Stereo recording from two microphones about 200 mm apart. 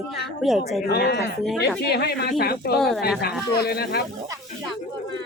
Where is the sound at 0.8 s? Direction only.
50° left (ahead or behind).